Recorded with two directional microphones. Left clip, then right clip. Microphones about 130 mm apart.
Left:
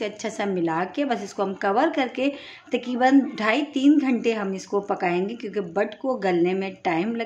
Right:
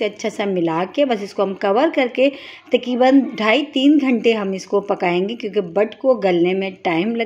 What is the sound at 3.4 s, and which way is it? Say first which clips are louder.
A woman's voice: right 6 dB; 20° right (ahead or behind).